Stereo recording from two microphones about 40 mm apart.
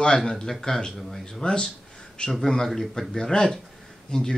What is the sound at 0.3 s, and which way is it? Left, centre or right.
Speech, centre.